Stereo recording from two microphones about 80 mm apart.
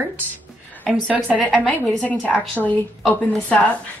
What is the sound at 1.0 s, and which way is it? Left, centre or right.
A woman's voice, centre.